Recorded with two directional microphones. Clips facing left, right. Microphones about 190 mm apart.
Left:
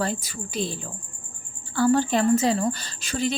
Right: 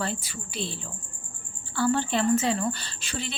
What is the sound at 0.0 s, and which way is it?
A woman's voice, 40° left (ahead or behind).